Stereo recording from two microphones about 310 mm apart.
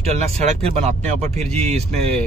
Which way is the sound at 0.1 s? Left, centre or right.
Right.